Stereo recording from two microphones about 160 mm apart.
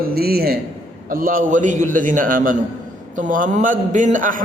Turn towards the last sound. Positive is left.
turn(degrees=-55)  # may be behind; listen again after turning